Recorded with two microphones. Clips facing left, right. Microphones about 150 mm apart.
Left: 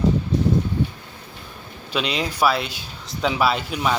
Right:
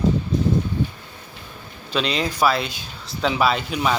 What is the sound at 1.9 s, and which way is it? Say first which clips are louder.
Speech: right 1 dB; 10° left (ahead or behind).